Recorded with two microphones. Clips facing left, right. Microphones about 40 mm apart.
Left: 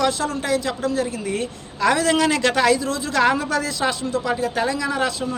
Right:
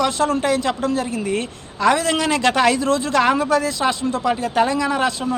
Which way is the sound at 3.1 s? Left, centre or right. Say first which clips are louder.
Even; centre.